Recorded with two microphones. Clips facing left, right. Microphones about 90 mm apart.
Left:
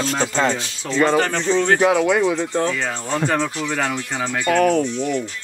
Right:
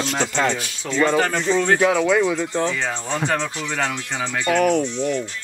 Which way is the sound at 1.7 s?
25° left (ahead or behind).